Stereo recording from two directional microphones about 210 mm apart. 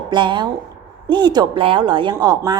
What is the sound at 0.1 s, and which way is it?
A woman's voice, 20° right (ahead or behind).